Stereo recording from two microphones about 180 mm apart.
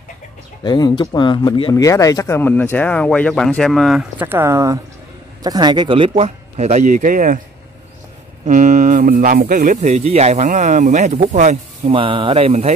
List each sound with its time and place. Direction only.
0.7 s speech: 25° left (ahead or behind); by 4.0 s centre (ahead or behind)
4.2 s speech: 10° right (ahead or behind); by 7.3 s 45° right (ahead or behind)
8.5 s speech: 45° right (ahead or behind)